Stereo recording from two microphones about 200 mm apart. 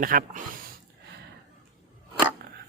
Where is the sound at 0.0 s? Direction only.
45° right (ahead or behind).